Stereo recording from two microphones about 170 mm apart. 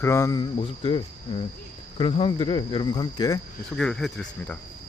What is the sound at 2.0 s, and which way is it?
Speech, 35° left (ahead or behind).